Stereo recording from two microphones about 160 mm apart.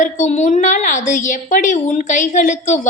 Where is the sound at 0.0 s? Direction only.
45° left (ahead or behind).